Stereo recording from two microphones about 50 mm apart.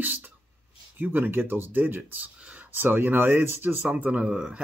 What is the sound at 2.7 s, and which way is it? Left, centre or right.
Speech, right.